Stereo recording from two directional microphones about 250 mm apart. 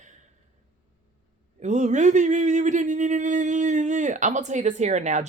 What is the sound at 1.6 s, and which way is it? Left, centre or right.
Speech, right.